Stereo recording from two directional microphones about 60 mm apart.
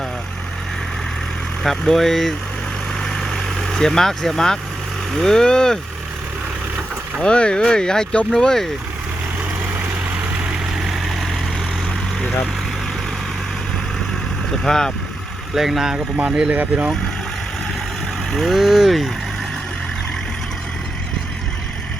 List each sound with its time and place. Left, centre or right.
1.6 s speech: centre
3.0 s vehicle: centre
5.1 s speech: centre
7.2 s speech: centre
10.8 s vehicle: centre
14.6 s speech: centre
15.5 s speech: centre
16.6 s speech: right
18.3 s speech: centre